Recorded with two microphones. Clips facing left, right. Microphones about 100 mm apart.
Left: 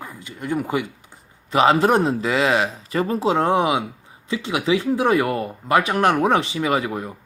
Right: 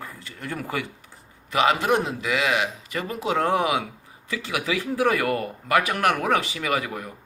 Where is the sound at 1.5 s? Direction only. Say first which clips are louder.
Left 5 dB; 30° left (ahead or behind).